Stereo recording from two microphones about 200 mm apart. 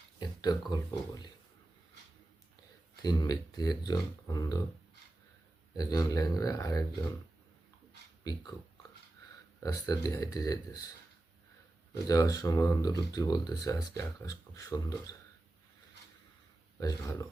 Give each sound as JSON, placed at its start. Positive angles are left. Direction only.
{"t": 0.2, "sound": "speech", "side_deg": 20}
{"t": 3.0, "sound": "speech", "side_deg": 20}
{"t": 5.7, "sound": "speech", "side_deg": 20}
{"t": 8.2, "sound": "speech", "side_deg": 20}
{"t": 9.8, "sound": "speech", "side_deg": 15}
{"t": 12.0, "sound": "speech", "side_deg": 15}
{"t": 16.8, "sound": "speech", "side_deg": 15}